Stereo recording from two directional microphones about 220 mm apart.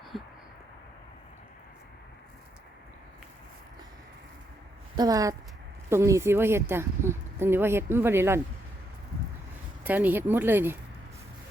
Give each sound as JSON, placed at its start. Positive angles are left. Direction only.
{"t": 4.9, "sound": "a woman's voice", "side_deg": -15}
{"t": 9.8, "sound": "a woman's voice", "side_deg": -5}